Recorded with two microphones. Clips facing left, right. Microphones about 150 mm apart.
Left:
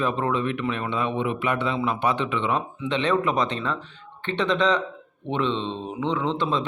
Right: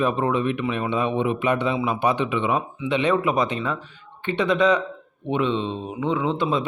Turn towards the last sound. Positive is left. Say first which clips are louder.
# right 2 dB
turn(degrees=-10)  # may be behind; listen again after turning